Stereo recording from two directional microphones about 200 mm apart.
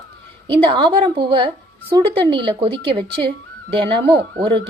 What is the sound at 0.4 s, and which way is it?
A woman's voice, 25° right (ahead or behind).